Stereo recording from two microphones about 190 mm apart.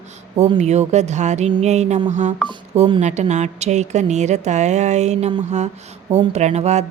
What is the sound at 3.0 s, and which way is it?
A woman's voice, 35° right (ahead or behind).